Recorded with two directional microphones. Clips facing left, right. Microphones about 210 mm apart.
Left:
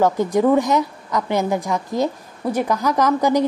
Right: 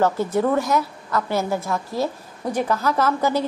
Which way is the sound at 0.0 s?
15° left (ahead or behind).